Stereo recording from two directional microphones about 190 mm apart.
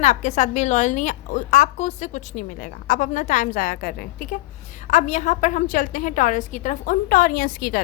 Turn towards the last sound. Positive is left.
turn(degrees=50)  # may be behind; listen again after turning